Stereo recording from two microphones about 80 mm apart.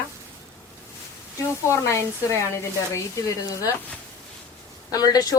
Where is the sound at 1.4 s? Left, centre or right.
Left.